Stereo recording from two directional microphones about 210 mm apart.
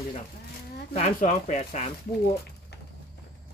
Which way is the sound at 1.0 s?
35° left (ahead or behind).